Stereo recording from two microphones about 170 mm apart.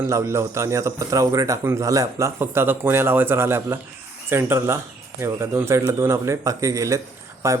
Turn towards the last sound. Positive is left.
turn(degrees=-15)  # may be behind; listen again after turning